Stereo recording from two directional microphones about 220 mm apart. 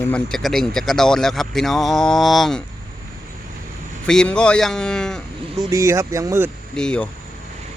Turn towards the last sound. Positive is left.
turn(degrees=5)  # may be behind; listen again after turning